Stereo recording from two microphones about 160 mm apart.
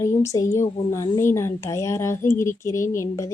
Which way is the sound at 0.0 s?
20° left (ahead or behind).